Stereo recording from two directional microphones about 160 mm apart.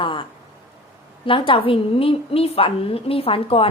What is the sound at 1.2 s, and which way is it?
A woman's voice, 30° left (ahead or behind).